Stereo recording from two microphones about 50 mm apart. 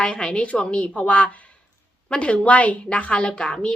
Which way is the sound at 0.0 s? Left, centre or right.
Centre.